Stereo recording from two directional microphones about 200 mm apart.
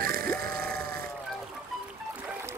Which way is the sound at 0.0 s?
45° right (ahead or behind).